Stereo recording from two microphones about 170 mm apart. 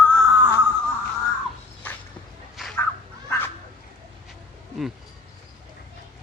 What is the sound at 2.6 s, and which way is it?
Fowl, centre (ahead or behind).